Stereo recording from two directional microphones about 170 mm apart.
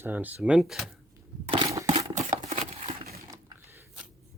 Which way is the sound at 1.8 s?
40° right (ahead or behind).